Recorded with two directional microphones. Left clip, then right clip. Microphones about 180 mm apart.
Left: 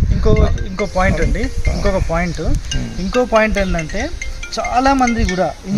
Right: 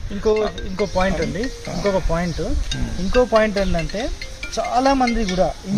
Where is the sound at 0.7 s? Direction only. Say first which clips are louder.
Left 3 dB; 20° right (ahead or behind).